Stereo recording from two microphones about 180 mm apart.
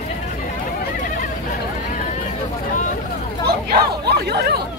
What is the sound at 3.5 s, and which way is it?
Chatter, 65° right (ahead or behind).